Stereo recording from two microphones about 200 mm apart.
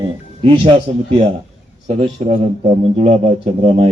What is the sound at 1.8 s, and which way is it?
Speech, 30° right (ahead or behind).